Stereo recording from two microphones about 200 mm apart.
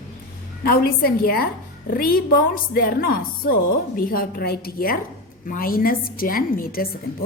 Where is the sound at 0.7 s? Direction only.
45° left (ahead or behind).